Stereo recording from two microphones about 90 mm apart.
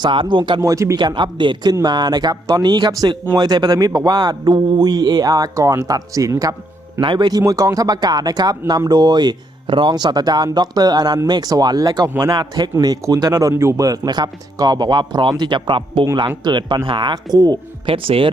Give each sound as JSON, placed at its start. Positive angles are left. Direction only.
{"t": 0.0, "sound": "speech", "side_deg": -65}
{"t": 0.6, "sound": "speech", "side_deg": -35}
{"t": 0.9, "sound": "a man's voice", "side_deg": -60}
{"t": 7.0, "sound": "speech", "side_deg": -65}
{"t": 7.3, "sound": "a man's voice", "side_deg": -40}
{"t": 16.4, "sound": "speech", "side_deg": -55}
{"t": 17.3, "sound": "a man's voice", "side_deg": -50}
{"t": 17.8, "sound": "speech", "side_deg": -85}